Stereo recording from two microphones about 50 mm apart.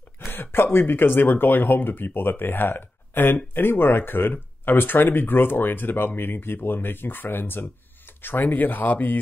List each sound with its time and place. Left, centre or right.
0.3 s speech: left